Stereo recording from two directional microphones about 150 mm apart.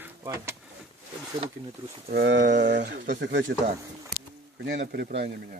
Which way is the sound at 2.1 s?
75° right (ahead or behind).